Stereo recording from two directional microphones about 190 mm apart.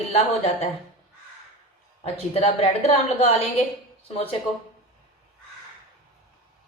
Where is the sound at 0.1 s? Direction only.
35° left (ahead or behind).